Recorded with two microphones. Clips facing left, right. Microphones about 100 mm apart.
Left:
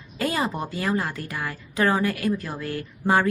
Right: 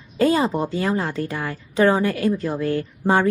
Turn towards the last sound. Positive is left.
turn(degrees=-30)  # may be behind; listen again after turning